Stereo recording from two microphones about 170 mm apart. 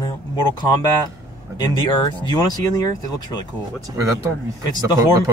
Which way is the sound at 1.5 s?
25° left (ahead or behind).